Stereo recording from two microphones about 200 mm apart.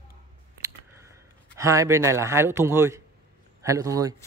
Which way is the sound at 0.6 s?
15° right (ahead or behind).